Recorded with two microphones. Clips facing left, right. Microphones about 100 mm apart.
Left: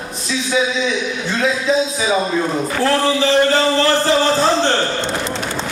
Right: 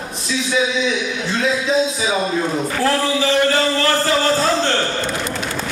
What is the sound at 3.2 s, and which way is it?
Music, 30° left (ahead or behind).